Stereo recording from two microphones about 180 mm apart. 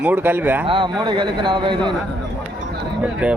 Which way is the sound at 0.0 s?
10° right (ahead or behind).